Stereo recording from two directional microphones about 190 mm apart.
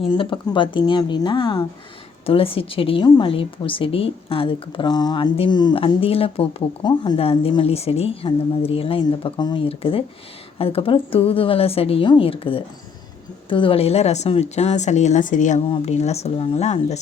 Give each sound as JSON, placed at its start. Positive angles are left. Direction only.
{"t": 0.1, "sound": "speech", "side_deg": 25}